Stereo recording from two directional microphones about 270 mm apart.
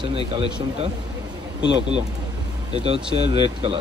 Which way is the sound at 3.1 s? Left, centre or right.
Centre.